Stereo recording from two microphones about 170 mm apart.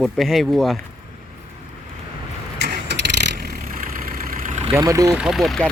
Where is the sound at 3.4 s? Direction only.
65° right (ahead or behind); by 4.7 s 45° right (ahead or behind).